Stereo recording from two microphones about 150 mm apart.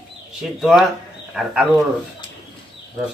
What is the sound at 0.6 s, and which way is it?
Speech, centre (ahead or behind).